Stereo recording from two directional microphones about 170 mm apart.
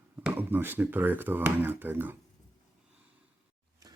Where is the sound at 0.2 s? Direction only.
10° right (ahead or behind).